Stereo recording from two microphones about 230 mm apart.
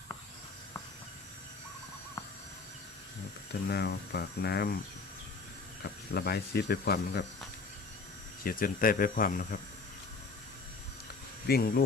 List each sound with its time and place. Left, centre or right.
3.7 s speech: left
6.1 s speech: left
8.4 s speech: left
11.4 s speech: left